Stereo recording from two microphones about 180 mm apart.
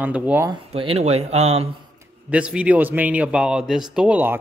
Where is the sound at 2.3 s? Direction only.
5° right (ahead or behind).